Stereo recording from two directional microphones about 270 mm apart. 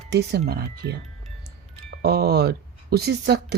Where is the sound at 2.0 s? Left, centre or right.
Right.